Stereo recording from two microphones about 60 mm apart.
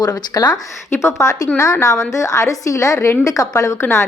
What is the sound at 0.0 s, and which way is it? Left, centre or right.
Speech, left.